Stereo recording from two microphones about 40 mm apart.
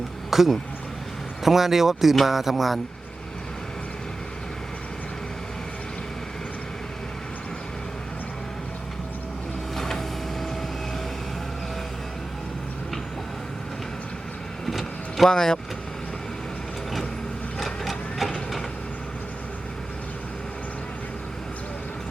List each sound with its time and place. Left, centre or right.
0.3 s speech: centre
9.7 s vehicle: centre
14.7 s vehicle: centre
15.3 s speech: centre
17.6 s sewing machine: centre